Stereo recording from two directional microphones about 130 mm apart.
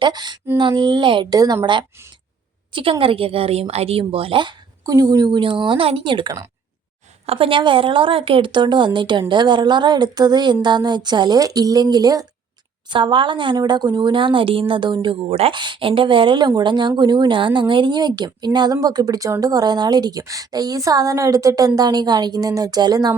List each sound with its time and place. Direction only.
0.0 s speech: 35° right (ahead or behind)
2.7 s a woman's voice: 45° right (ahead or behind)
4.9 s a woman's voice: 25° right (ahead or behind)
5.4 s speech: 40° right (ahead or behind)